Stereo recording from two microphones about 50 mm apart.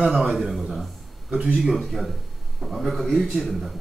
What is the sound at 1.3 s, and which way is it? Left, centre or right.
Speech, right.